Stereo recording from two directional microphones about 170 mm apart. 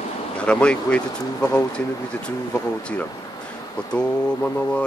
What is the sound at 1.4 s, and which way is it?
Speech, 20° left (ahead or behind).